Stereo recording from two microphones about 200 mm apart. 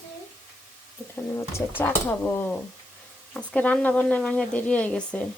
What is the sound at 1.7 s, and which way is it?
Speech, 10° left (ahead or behind).